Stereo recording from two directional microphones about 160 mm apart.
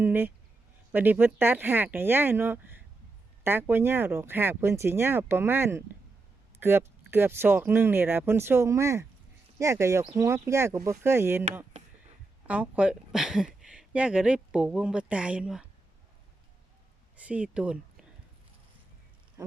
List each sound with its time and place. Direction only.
0.0 s speech: 10° right (ahead or behind)
17.2 s speech: 10° right (ahead or behind)